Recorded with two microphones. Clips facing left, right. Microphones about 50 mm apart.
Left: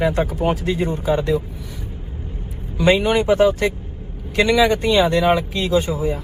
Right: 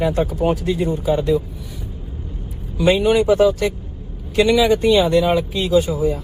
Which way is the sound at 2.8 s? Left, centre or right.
Left.